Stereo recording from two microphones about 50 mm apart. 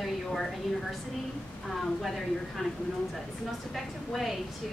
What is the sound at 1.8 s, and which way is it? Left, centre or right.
Speech, centre.